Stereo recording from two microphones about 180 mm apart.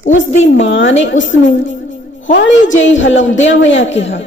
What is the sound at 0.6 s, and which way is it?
Speech, 80° left.